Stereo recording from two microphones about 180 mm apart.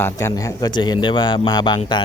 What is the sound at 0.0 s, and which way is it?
Speech, 15° left (ahead or behind).